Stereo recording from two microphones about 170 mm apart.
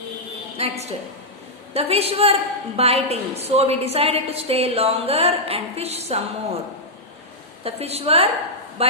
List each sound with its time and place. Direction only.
0.5 s a woman's voice: 40° right (ahead or behind)
7.6 s a woman's voice: 35° right (ahead or behind)